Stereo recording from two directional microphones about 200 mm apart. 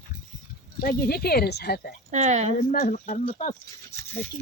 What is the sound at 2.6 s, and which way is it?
Speech, 40° left (ahead or behind).